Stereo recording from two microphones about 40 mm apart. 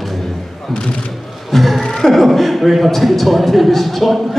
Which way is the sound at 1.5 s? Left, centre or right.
Centre.